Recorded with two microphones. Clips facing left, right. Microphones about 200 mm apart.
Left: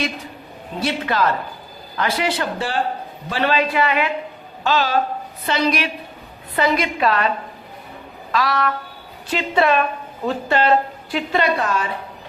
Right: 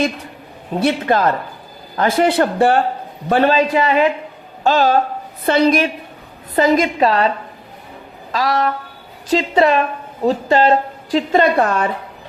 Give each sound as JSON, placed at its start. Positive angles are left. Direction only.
{"t": 0.8, "sound": "speech", "side_deg": -50}
{"t": 3.5, "sound": "a woman's voice", "side_deg": -40}
{"t": 4.6, "sound": "a woman's voice", "side_deg": -50}
{"t": 8.3, "sound": "a woman's voice", "side_deg": -40}
{"t": 11.6, "sound": "speech", "side_deg": -60}